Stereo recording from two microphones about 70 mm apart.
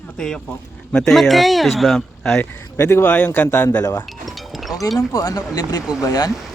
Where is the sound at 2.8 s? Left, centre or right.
Left.